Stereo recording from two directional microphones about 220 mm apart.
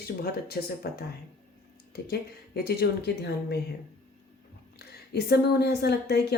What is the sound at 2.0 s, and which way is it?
Speech, 45° left (ahead or behind).